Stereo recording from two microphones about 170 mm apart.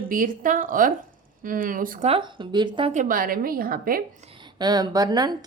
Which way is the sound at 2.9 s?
50° right (ahead or behind).